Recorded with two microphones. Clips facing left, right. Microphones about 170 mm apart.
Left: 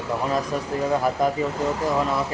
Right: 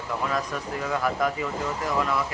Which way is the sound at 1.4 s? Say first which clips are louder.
Left 5 dB; 25° left (ahead or behind).